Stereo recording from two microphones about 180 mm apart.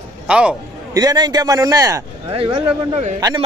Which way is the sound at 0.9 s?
20° right (ahead or behind).